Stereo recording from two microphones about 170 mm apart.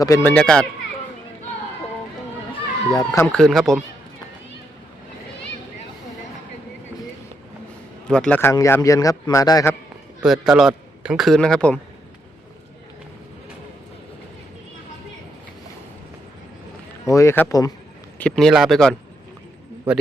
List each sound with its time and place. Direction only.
0.0 s speech: 20° left (ahead or behind)
0.3 s a man's voice: 5° left (ahead or behind)
2.5 s cat: 25° left (ahead or behind)
3.3 s a man's voice: centre (ahead or behind)
8.0 s a man's voice: 5° left (ahead or behind)
10.2 s a man's voice: centre (ahead or behind)
17.1 s a man's voice: 15° left (ahead or behind)
18.2 s a man's voice: 5° left (ahead or behind)
19.9 s a man's voice: 10° right (ahead or behind)